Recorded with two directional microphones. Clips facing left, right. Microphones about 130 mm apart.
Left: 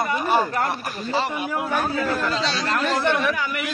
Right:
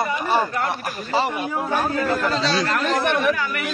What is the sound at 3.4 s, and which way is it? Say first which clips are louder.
Speech: right 1 dB; 20° left (ahead or behind).